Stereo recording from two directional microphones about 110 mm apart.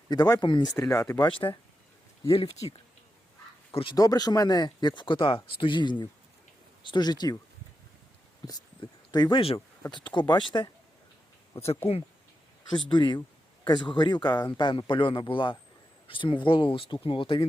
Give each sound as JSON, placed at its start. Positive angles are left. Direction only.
{"t": 0.1, "sound": "speech", "side_deg": 40}
{"t": 0.7, "sound": "speech", "side_deg": 30}
{"t": 1.2, "sound": "speech", "side_deg": 50}
{"t": 3.9, "sound": "speech", "side_deg": 35}
{"t": 8.8, "sound": "a sound", "side_deg": 45}
{"t": 9.9, "sound": "speech", "side_deg": 45}
{"t": 11.6, "sound": "speech", "side_deg": 65}
{"t": 12.7, "sound": "speech", "side_deg": 45}